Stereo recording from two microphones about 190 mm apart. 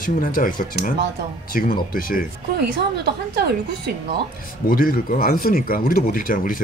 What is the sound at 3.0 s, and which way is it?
Speech, 60° right (ahead or behind).